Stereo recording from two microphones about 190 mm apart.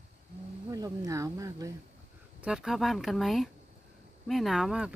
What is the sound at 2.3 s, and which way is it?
Speech, 5° right (ahead or behind).